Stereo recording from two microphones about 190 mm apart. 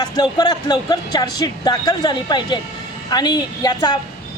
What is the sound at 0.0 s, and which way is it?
Speech, 20° left (ahead or behind).